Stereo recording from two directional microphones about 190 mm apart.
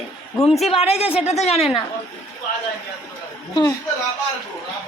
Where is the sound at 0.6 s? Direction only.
30° left (ahead or behind).